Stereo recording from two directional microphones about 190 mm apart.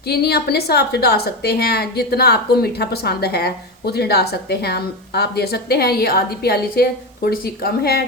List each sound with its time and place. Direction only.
0.1 s a woman's voice: 60° left (ahead or behind)